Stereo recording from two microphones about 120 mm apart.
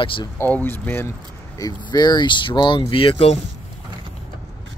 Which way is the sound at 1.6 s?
35° left (ahead or behind).